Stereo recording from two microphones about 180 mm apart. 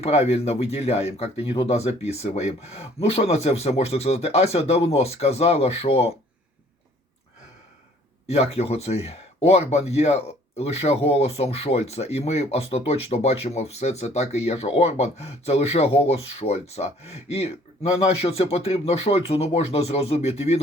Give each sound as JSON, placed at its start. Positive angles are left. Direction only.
{"t": 0.0, "sound": "speech", "side_deg": 35}
{"t": 8.3, "sound": "speech", "side_deg": 35}